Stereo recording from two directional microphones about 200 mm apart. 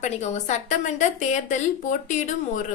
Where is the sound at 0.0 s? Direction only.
35° left (ahead or behind).